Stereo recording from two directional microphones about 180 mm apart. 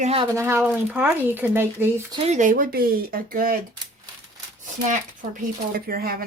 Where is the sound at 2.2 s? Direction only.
40° right (ahead or behind).